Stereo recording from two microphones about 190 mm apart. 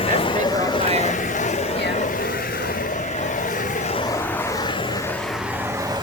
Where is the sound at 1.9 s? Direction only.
45° left (ahead or behind).